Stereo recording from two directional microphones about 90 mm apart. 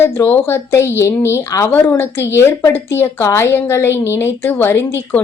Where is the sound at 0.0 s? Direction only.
25° left (ahead or behind).